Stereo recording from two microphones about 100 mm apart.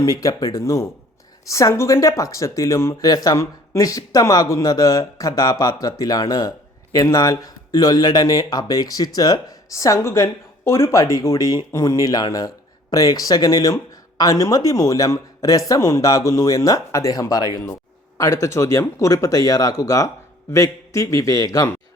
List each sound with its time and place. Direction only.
0.0 s speech: 35° left (ahead or behind)